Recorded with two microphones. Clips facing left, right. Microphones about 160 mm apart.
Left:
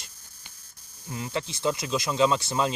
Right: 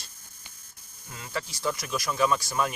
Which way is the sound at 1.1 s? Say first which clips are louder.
Left 4 dB; 20° left (ahead or behind).